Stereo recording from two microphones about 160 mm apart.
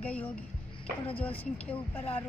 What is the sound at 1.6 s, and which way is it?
Speech, 10° left (ahead or behind).